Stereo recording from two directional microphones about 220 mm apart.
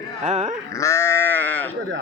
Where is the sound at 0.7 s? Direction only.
15° left (ahead or behind).